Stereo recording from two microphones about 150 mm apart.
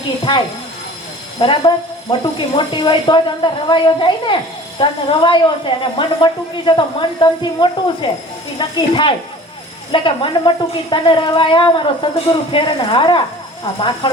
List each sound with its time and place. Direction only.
0.3 s a woman's voice: 30° left (ahead or behind)